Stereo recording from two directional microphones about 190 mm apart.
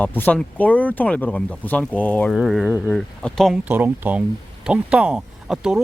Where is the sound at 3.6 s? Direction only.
10° right (ahead or behind).